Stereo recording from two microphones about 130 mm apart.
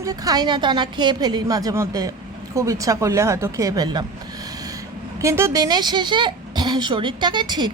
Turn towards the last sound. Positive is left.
turn(degrees=-35)  # may be behind; listen again after turning